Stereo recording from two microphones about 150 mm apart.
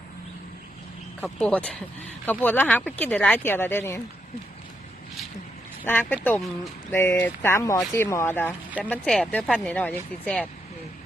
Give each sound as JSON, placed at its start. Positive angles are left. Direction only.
{"t": 1.2, "sound": "speech", "side_deg": 5}
{"t": 5.8, "sound": "speech", "side_deg": 15}
{"t": 8.8, "sound": "speech", "side_deg": 5}